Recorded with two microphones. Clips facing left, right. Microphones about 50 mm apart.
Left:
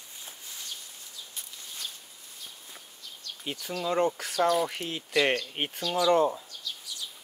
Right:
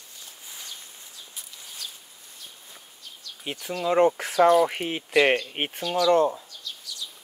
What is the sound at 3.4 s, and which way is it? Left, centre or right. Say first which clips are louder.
Speech: right 4 dB; right.